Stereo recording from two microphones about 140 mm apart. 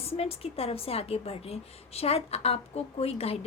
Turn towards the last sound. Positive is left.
turn(degrees=45)  # may be behind; listen again after turning